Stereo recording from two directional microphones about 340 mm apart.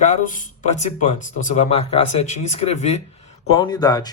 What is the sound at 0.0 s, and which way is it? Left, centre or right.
Speech, left.